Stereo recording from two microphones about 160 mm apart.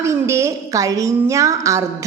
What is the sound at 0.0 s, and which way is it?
A woman's voice, 15° right (ahead or behind).